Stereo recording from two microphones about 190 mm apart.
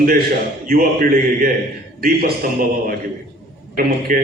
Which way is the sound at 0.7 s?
50° right (ahead or behind).